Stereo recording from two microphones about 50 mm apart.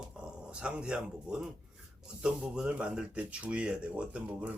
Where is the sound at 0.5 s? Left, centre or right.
Right.